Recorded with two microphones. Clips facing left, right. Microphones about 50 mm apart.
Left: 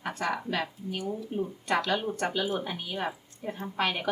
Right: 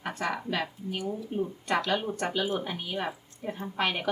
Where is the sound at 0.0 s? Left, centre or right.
Centre.